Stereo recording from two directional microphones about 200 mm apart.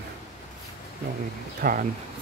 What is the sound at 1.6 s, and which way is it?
Speech, 50° right (ahead or behind).